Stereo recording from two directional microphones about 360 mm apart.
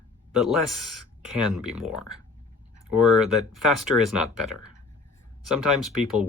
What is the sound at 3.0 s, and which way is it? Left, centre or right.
Speech, centre.